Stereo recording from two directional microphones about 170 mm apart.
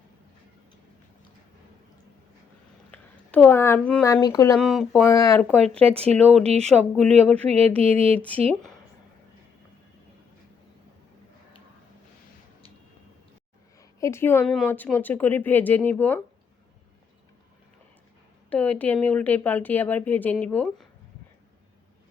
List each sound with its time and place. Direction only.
2.9 s a sound: 10° left (ahead or behind)
4.0 s speech: 20° left (ahead or behind)
4.5 s speech: centre (ahead or behind)
5.0 s speech: 15° left (ahead or behind)
5.7 s speech: 35° right (ahead or behind)
6.7 s speech: 5° left (ahead or behind)
7.8 s speech: 35° right (ahead or behind)
14.0 s a woman's voice: 15° left (ahead or behind)
18.5 s speech: 10° left (ahead or behind)